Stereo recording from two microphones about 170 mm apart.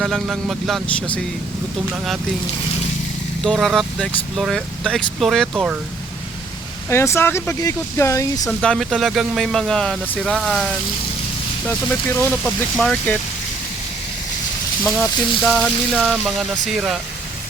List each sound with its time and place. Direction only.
0.0 s speech: centre (ahead or behind)
3.5 s speech: centre (ahead or behind)
6.9 s speech: 15° left (ahead or behind)
8.4 s speech: 5° left (ahead or behind)
14.8 s speech: centre (ahead or behind)